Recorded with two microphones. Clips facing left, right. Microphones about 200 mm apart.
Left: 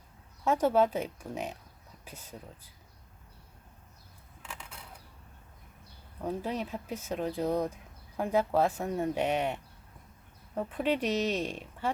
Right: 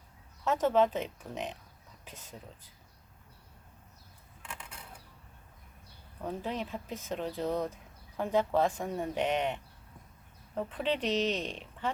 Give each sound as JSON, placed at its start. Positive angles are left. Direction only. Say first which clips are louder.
{"t": 0.4, "sound": "speech", "louder": "left 1 dB", "side_deg": 10}
{"t": 6.2, "sound": "speech", "louder": "left 2 dB", "side_deg": 10}